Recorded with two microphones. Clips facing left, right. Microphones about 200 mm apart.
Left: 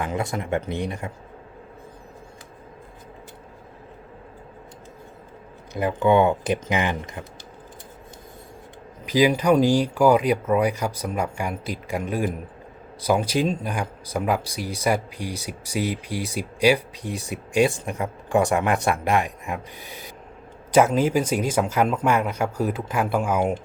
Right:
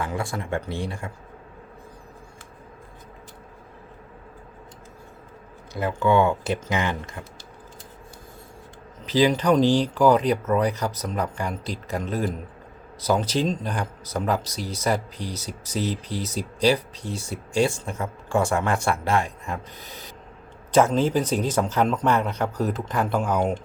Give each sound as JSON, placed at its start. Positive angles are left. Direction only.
{"t": 0.0, "sound": "speech", "side_deg": 20}
{"t": 5.7, "sound": "speech", "side_deg": 15}
{"t": 9.0, "sound": "speech", "side_deg": 10}